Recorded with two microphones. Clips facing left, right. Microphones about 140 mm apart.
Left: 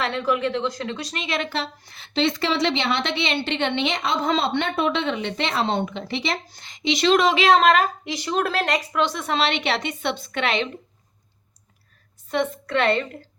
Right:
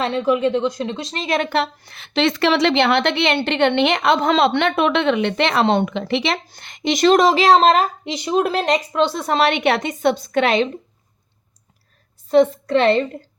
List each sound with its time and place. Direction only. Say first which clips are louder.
0.0 s speech: right 5 dB; 25° right (ahead or behind)
1.2 s a woman's voice: right 8 dB; 50° right (ahead or behind)
12.3 s speech: right 9 dB; 30° right (ahead or behind)